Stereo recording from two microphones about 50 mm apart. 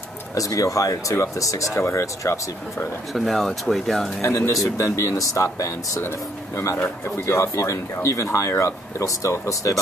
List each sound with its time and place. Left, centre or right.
0.3 s speech: left
3.1 s speech: centre
4.2 s speech: left
7.2 s speech: left